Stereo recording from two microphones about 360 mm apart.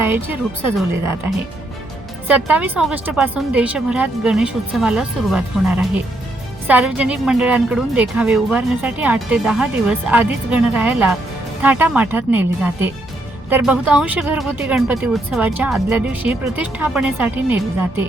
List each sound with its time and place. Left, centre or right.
0.8 s speech: centre